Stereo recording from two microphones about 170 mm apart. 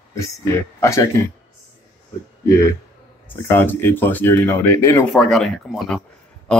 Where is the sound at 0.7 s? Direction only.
15° left (ahead or behind).